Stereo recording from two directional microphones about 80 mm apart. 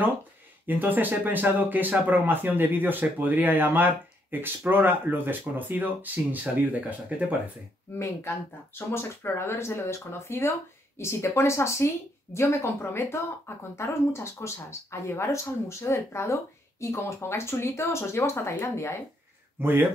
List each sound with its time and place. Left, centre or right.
0.7 s speech: right
8.0 s speech: left
19.6 s speech: right